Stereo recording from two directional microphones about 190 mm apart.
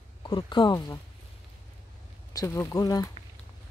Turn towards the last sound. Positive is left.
turn(degrees=20)  # may be behind; listen again after turning